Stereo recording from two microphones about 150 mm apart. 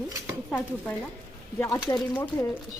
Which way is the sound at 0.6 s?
15° left (ahead or behind).